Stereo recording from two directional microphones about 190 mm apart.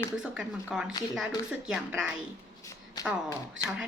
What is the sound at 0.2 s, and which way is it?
A woman's voice, 5° right (ahead or behind).